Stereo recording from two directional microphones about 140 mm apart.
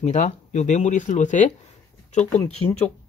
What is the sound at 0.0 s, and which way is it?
Speech, 55° left (ahead or behind).